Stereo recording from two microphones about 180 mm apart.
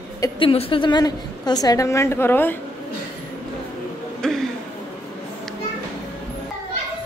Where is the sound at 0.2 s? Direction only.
30° left (ahead or behind); by 2.5 s 10° left (ahead or behind).